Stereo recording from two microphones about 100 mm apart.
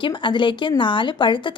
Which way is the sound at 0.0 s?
50° left (ahead or behind).